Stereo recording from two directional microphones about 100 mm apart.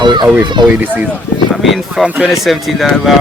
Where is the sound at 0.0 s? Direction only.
50° right (ahead or behind).